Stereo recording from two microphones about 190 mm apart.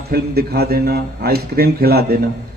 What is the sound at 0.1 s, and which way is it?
A man's voice, 55° right (ahead or behind).